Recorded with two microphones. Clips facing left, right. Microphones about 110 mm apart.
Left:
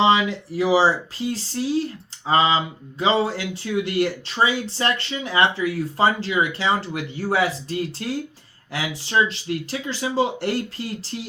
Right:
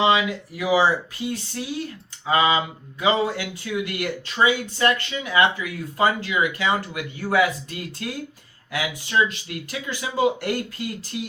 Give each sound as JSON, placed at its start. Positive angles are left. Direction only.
{"t": 0.0, "sound": "speech", "side_deg": 30}